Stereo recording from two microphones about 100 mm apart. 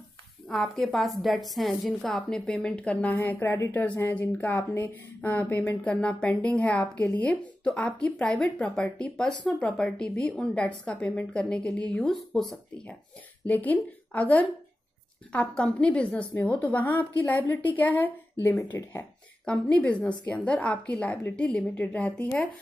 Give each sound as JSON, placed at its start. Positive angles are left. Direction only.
{"t": 0.5, "sound": "a woman's voice", "side_deg": 0}
{"t": 3.7, "sound": "a woman's voice", "side_deg": 15}
{"t": 13.5, "sound": "a woman's voice", "side_deg": 15}
{"t": 19.4, "sound": "a woman's voice", "side_deg": 10}